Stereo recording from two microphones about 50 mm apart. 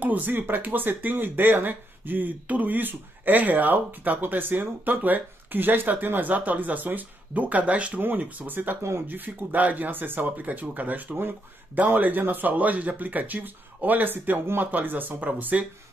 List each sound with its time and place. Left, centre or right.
0.0 s speech: right
8.2 s speech: right
14.4 s speech: right
14.7 s speech: right